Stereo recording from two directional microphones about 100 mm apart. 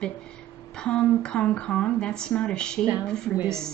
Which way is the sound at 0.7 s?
10° left (ahead or behind).